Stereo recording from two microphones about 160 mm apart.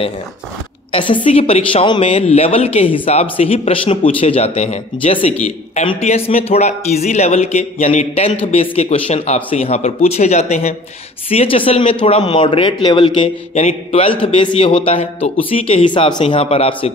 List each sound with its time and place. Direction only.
0.9 s a woman's voice: 30° left (ahead or behind); by 8.1 s 50° left (ahead or behind)
8.1 s a woman's voice: 40° left (ahead or behind)